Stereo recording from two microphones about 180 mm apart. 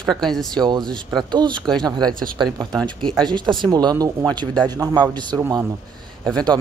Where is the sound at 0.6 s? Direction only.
25° right (ahead or behind).